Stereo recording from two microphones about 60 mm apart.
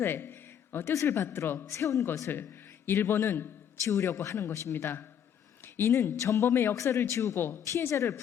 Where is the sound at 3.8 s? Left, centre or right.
Left.